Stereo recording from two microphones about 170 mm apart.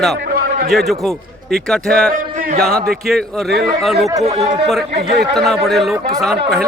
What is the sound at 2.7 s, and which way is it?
Speech, 60° right (ahead or behind).